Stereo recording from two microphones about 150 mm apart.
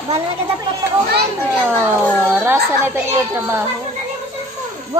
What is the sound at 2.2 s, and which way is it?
Speech, 15° right (ahead or behind).